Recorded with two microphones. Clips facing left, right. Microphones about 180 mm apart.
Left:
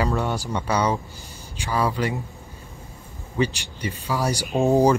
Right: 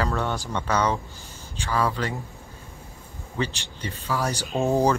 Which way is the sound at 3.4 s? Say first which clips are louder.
Left 5 dB; 15° left (ahead or behind).